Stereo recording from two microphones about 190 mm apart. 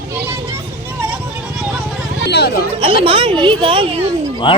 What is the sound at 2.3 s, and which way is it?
Chatter, 60° left (ahead or behind).